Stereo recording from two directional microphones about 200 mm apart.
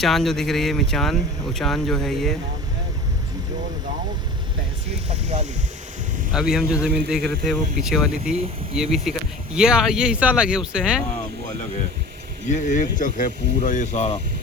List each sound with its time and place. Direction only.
0.0 s speech: centre (ahead or behind)
5.0 s speech: 35° right (ahead or behind)
6.3 s speech: centre (ahead or behind)
12.5 s speech: 40° left (ahead or behind)